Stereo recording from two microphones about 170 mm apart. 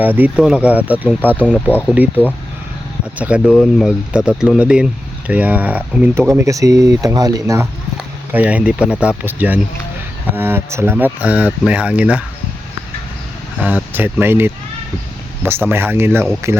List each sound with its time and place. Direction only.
0.0 s speech: 10° right (ahead or behind)
1.5 s speech: 10° left (ahead or behind)
3.2 s speech: 5° right (ahead or behind)
13.6 s speech: 10° right (ahead or behind)